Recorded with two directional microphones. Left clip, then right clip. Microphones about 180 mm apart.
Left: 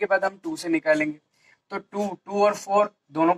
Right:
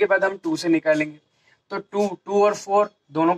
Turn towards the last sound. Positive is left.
turn(degrees=-15)  # may be behind; listen again after turning